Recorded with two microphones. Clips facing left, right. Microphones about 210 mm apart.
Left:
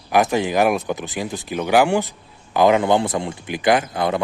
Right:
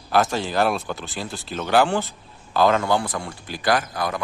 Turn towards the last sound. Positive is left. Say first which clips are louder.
# left 5 dB
turn(degrees=25)  # may be behind; listen again after turning